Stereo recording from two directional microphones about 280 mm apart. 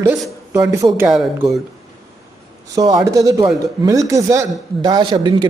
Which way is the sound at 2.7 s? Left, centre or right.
Centre.